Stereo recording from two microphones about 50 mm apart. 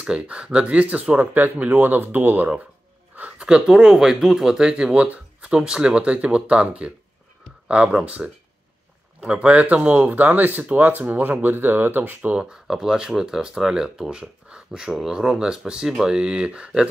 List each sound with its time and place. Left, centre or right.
0.0 s speech: right
3.3 s speech: centre
5.0 s a sound: right
5.5 s speech: centre; by 12.4 s right
12.4 s speech: centre